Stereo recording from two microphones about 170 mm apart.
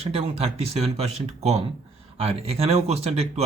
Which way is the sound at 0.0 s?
35° right (ahead or behind).